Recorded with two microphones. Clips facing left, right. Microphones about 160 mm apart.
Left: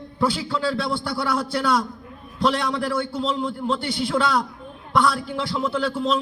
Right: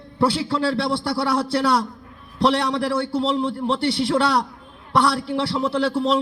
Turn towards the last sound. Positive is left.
turn(degrees=-35)  # may be behind; listen again after turning